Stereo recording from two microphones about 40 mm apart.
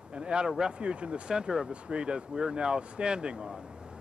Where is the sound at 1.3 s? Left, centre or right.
Centre.